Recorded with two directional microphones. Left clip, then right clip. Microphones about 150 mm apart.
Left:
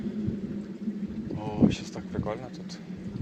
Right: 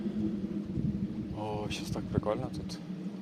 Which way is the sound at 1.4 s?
35° right (ahead or behind).